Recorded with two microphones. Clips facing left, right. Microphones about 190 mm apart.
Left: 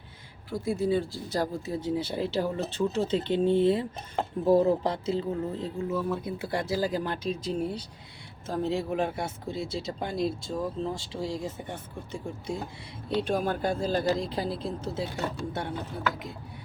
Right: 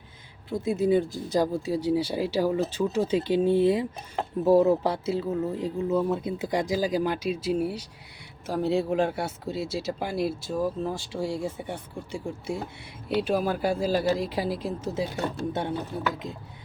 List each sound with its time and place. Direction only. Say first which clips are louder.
0.5 s speech: right 4 dB; 20° right (ahead or behind)
5.9 s speech: right 5 dB; 25° right (ahead or behind); by 10.9 s 5° right (ahead or behind)
10.9 s speech: right 3 dB; 25° left (ahead or behind)
11.4 s speech: right 3 dB; 10° right (ahead or behind)